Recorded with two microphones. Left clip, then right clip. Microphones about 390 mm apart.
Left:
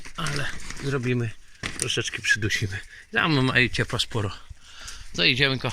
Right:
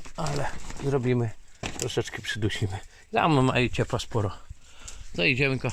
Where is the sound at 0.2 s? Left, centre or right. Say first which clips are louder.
Left 1 dB; centre.